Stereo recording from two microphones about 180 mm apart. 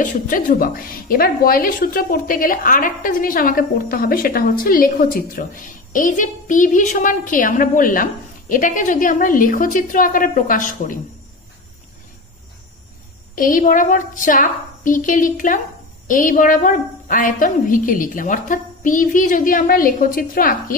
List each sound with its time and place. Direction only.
0.0 s a woman's voice: 45° left (ahead or behind)
13.3 s a woman's voice: 50° left (ahead or behind)